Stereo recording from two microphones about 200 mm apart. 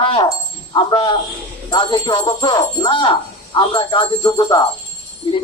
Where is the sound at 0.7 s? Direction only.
25° left (ahead or behind).